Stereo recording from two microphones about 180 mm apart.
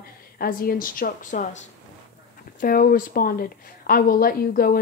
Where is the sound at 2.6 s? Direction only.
55° left (ahead or behind).